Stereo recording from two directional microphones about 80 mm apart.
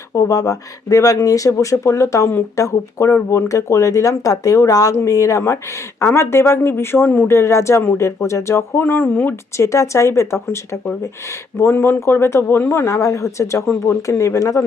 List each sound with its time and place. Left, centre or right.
0.2 s speech: left
7.3 s speech: left